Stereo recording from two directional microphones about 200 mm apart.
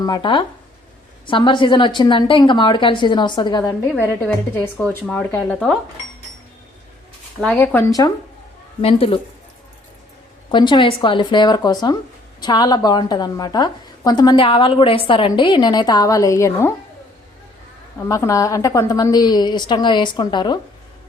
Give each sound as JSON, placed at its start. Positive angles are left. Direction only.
{"t": 0.0, "sound": "a woman's voice", "side_deg": 20}
{"t": 7.4, "sound": "speech", "side_deg": 5}
{"t": 8.8, "sound": "a woman's voice", "side_deg": 30}
{"t": 10.5, "sound": "a woman's voice", "side_deg": 25}
{"t": 18.0, "sound": "a woman's voice", "side_deg": 15}